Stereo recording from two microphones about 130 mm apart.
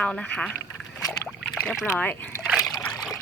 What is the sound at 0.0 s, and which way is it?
Speech, 10° left (ahead or behind).